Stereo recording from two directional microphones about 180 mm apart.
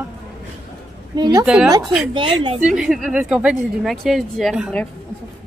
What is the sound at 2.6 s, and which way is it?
A woman's voice, 5° right (ahead or behind).